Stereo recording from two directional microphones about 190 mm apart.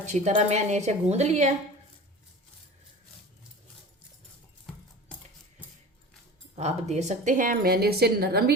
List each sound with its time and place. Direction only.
0.0 s a woman's voice: 35° right (ahead or behind)
6.6 s a woman's voice: 35° right (ahead or behind); by 8.5 s 55° right (ahead or behind)